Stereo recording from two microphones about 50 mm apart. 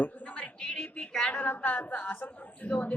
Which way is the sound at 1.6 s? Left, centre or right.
Left.